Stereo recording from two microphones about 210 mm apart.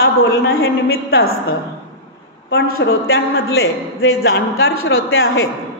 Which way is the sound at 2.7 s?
75° left (ahead or behind).